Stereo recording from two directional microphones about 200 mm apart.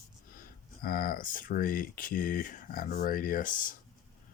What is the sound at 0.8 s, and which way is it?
Speech, 45° left (ahead or behind).